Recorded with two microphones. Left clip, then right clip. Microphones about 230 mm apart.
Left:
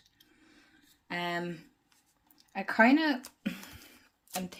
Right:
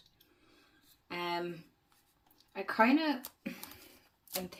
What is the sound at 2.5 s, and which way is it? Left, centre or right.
Speech, left.